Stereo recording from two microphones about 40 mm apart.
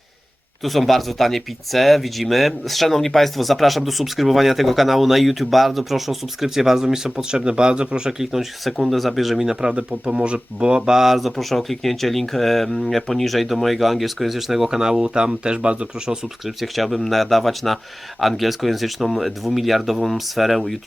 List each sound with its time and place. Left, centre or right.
0.6 s speech: centre; by 8.1 s right
8.2 s speech: centre
9.6 s speech: centre
9.9 s speech: right; by 14.8 s centre
14.8 s speech: centre
16.6 s speech: centre